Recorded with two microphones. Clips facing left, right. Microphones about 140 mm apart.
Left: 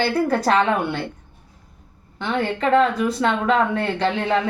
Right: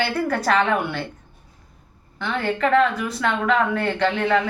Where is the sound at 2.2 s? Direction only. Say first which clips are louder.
Even; 25° left (ahead or behind).